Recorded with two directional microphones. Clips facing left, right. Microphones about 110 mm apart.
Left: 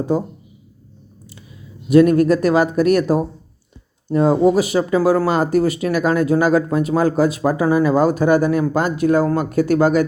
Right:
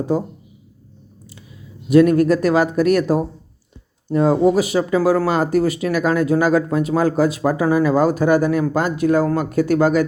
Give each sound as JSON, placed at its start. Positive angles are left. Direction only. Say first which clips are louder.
{"t": 2.2, "sound": "speech", "louder": "left 1 dB", "side_deg": 20}